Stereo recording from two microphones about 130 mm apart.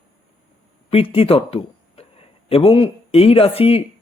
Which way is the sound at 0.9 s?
45° left (ahead or behind).